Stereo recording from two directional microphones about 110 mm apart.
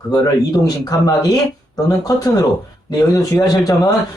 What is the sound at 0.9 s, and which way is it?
Speech, 35° left (ahead or behind).